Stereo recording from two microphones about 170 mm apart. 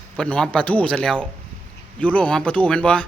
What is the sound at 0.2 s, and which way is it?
Speech, 5° left (ahead or behind).